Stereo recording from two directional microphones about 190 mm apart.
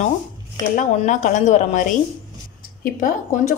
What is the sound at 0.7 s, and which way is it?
A woman's voice, 40° left (ahead or behind).